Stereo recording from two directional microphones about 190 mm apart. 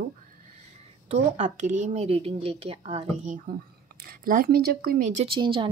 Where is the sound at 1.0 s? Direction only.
35° right (ahead or behind).